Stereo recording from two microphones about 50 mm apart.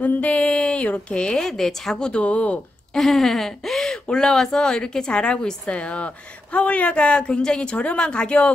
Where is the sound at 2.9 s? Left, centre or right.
Centre.